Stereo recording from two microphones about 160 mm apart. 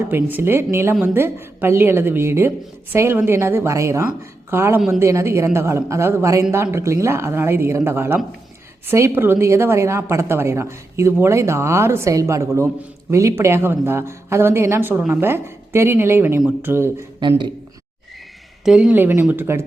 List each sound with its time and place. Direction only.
0.1 s a woman's voice: 10° right (ahead or behind)
17.2 s a man's voice: 30° right (ahead or behind)
18.6 s a woman's voice: 5° right (ahead or behind)